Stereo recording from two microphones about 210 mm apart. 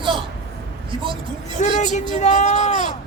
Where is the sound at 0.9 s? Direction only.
25° right (ahead or behind).